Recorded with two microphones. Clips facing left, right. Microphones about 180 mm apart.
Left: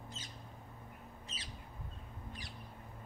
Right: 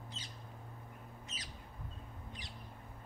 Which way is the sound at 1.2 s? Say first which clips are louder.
Even; 30° left (ahead or behind).